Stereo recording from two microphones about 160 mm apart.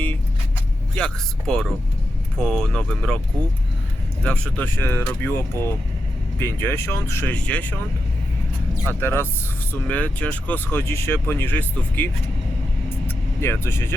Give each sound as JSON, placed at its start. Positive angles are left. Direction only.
{"t": 0.9, "sound": "speech", "side_deg": 5}
{"t": 4.2, "sound": "speech", "side_deg": 10}
{"t": 8.9, "sound": "speech", "side_deg": 15}
{"t": 13.1, "sound": "vehicle", "side_deg": 15}